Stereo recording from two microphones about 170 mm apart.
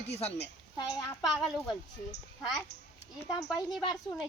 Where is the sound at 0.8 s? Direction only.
25° left (ahead or behind).